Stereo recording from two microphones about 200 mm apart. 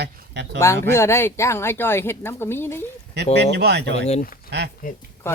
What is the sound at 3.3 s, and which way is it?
Speech, 55° right (ahead or behind).